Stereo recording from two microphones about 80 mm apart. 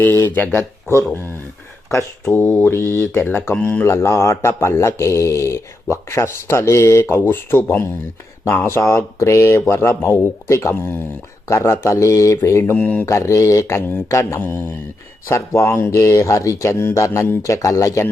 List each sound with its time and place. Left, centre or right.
0.0 s speech: left
2.3 s speech: left
3.8 s speech: left
12.7 s speech: centre
13.1 s speech: left